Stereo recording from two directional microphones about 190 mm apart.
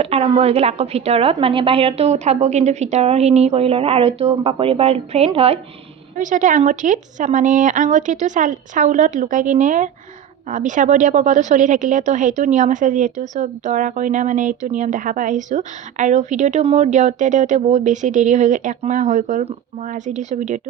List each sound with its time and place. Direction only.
0.0 s a woman's voice: 30° right (ahead or behind)
6.1 s a woman's voice: 40° right (ahead or behind)